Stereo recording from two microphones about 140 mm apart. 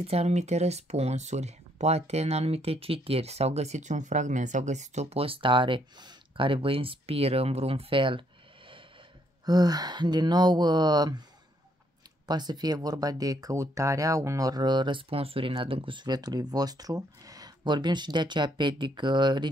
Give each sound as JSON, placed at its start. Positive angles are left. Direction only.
{"t": 0.0, "sound": "speech", "side_deg": -50}
{"t": 9.5, "sound": "speech", "side_deg": -25}
{"t": 12.3, "sound": "speech", "side_deg": -30}